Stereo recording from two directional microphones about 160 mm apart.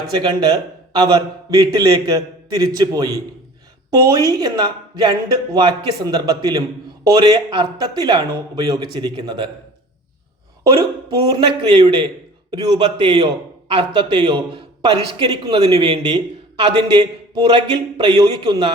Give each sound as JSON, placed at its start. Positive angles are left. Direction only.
{"t": 0.2, "sound": "a man's voice", "side_deg": -25}
{"t": 10.6, "sound": "a man's voice", "side_deg": -25}
{"t": 12.8, "sound": "a man's voice", "side_deg": -35}